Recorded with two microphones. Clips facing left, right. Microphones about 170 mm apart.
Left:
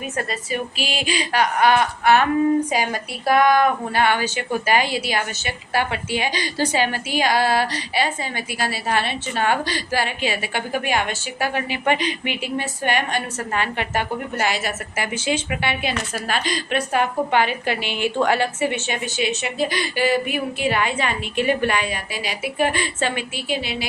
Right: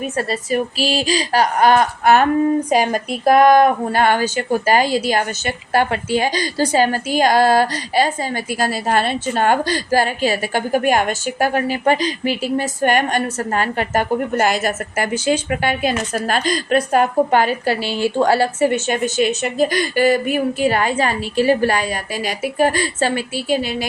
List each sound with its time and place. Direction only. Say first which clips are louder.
0.2 s a woman's voice: right 6 dB; 35° right (ahead or behind)